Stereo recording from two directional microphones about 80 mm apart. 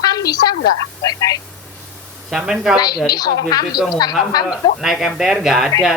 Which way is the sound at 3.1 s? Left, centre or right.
Left.